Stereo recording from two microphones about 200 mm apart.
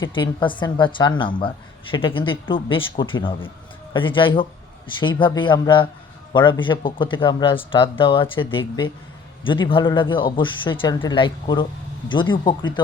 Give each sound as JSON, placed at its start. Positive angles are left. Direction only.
{"t": 0.0, "sound": "a woman's voice", "side_deg": 25}